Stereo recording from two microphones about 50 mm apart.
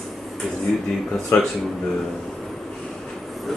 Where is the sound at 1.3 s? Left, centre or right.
Left.